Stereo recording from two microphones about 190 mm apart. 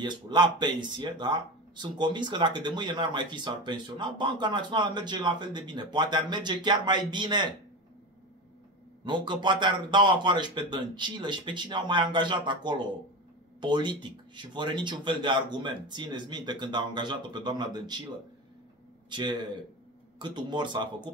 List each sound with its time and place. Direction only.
0.0 s speech: 25° right (ahead or behind)
9.0 s speech: 25° right (ahead or behind)
19.0 s speech: 25° right (ahead or behind)